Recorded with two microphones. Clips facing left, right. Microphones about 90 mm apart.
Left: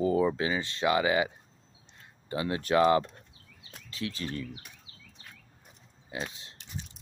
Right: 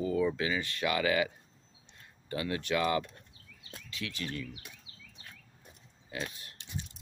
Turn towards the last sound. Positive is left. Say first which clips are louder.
# left 2 dB
turn(degrees=25)  # may be behind; listen again after turning